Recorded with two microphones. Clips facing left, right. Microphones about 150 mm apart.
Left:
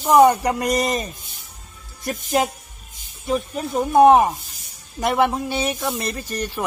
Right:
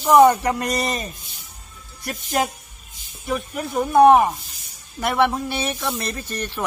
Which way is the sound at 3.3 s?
25° left (ahead or behind).